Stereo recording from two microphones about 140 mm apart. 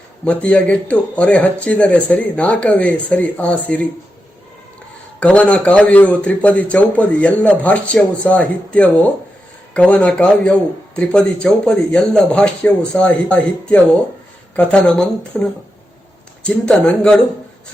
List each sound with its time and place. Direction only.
0.3 s a man's voice: 10° left (ahead or behind)
5.2 s a man's voice: 10° left (ahead or behind)